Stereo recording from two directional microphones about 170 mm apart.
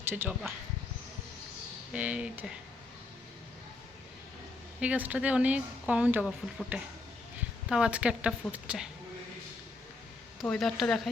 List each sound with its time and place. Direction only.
0.1 s speech: 15° right (ahead or behind)
1.9 s speech: 5° right (ahead or behind)
4.8 s speech: 10° right (ahead or behind)
6.4 s speech: centre (ahead or behind)
7.7 s speech: 5° right (ahead or behind)
10.4 s speech: 5° left (ahead or behind)